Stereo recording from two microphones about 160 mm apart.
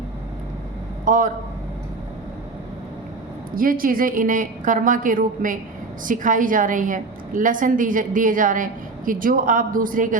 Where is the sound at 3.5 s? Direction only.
60° right (ahead or behind).